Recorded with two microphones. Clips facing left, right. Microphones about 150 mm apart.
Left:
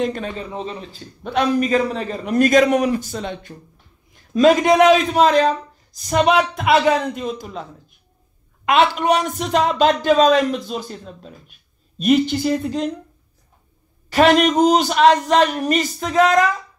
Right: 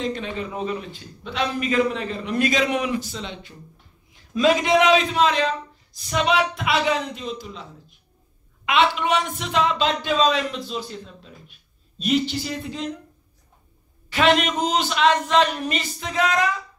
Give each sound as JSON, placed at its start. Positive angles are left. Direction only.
{"t": 0.0, "sound": "speech", "side_deg": 50}
{"t": 0.4, "sound": "speech", "side_deg": 30}
{"t": 1.2, "sound": "a man's voice", "side_deg": 50}
{"t": 8.6, "sound": "speech", "side_deg": 45}
{"t": 14.1, "sound": "speech", "side_deg": 45}